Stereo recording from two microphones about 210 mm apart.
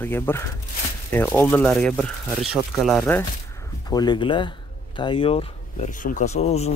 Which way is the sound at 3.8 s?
20° left (ahead or behind).